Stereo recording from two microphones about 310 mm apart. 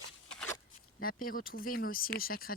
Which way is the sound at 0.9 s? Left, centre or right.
Left.